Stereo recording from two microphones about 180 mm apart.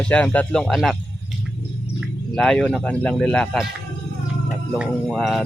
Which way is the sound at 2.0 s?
5° left (ahead or behind).